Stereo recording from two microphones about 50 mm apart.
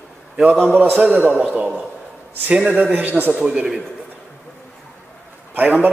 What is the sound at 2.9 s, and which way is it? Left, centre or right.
Speech, right.